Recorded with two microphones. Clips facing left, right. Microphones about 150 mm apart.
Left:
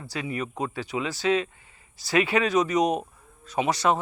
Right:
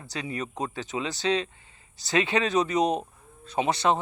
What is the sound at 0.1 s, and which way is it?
Speech, 30° right (ahead or behind).